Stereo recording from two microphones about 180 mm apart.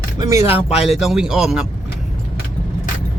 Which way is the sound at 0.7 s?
35° left (ahead or behind).